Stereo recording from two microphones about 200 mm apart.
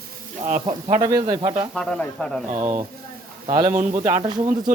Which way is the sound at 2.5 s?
15° right (ahead or behind).